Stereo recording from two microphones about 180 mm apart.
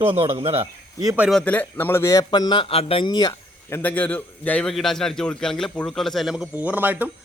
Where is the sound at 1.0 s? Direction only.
10° right (ahead or behind).